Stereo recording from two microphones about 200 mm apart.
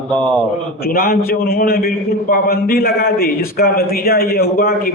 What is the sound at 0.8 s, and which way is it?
A man's voice, 50° left (ahead or behind).